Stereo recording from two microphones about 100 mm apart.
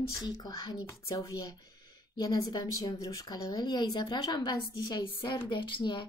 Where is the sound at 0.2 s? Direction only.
40° left (ahead or behind).